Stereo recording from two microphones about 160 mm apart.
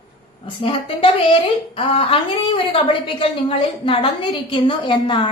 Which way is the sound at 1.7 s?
35° left (ahead or behind).